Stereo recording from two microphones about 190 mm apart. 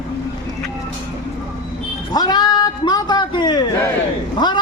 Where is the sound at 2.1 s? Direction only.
20° left (ahead or behind).